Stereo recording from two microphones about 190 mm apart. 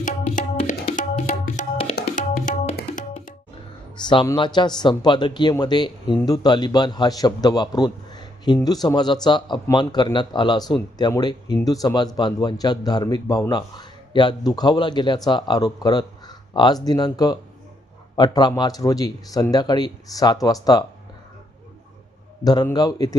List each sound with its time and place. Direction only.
0.0 s tabla: 40° left (ahead or behind)
1.5 s music: 40° left (ahead or behind)
2.0 s music: 55° left (ahead or behind)
3.9 s speech: 25° left (ahead or behind)
22.4 s speech: 20° left (ahead or behind)